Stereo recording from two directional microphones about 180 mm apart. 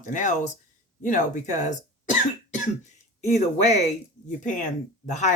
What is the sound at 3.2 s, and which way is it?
Speech, 40° left (ahead or behind).